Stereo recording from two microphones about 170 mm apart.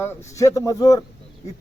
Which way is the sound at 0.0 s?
15° left (ahead or behind).